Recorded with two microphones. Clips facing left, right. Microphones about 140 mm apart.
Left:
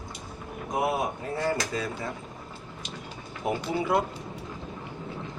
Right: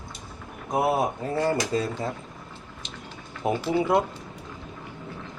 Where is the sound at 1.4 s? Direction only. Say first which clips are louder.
Right 3 dB; 30° right (ahead or behind).